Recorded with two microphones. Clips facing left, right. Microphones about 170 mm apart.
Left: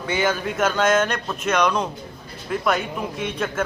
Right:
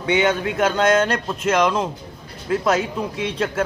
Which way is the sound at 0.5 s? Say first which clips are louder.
Right 1 dB; 20° right (ahead or behind).